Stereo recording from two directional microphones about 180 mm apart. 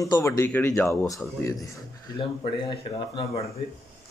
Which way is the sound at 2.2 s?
25° left (ahead or behind).